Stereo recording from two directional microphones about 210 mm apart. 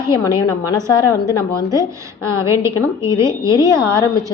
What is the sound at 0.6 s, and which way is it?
Speech, 15° left (ahead or behind).